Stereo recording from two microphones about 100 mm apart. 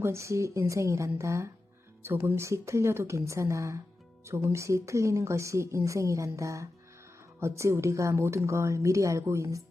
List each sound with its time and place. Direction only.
0.0 s a woman's voice: 30° right (ahead or behind)